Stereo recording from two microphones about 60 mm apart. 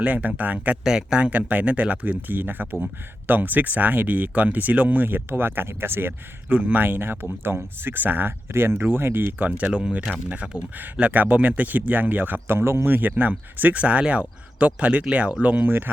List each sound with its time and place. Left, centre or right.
0.0 s speech: right
0.9 s speech: centre; by 6.1 s right
6.5 s speech: right
9.5 s speech: centre